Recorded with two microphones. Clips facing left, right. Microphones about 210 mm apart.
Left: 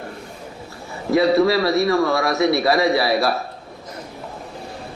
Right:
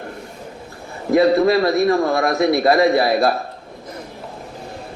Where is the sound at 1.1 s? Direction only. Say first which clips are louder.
Right 2 dB; 50° right (ahead or behind).